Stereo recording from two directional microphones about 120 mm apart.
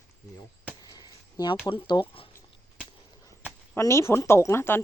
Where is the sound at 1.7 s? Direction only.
45° left (ahead or behind).